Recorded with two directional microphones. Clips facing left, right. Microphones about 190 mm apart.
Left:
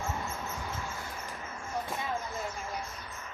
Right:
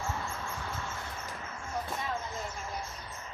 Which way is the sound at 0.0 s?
20° left (ahead or behind).